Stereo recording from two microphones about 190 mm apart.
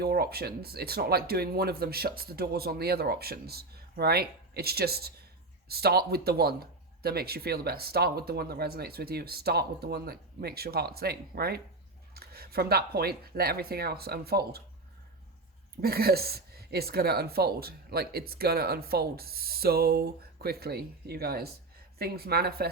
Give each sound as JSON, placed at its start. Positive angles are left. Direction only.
{"t": 0.0, "sound": "speech", "side_deg": -55}
{"t": 15.8, "sound": "speech", "side_deg": -55}